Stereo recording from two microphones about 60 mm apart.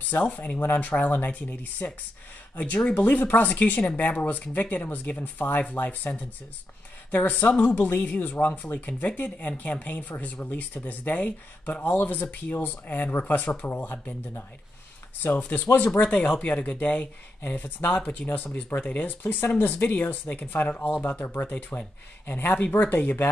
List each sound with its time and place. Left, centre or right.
0.1 s speech: left
15.2 s speech: left